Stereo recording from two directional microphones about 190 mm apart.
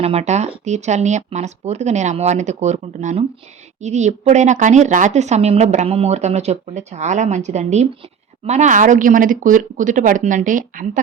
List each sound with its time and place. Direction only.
0.0 s a woman's voice: 35° right (ahead or behind)